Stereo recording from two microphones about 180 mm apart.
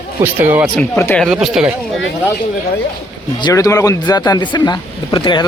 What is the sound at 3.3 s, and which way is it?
Speech, 20° left (ahead or behind).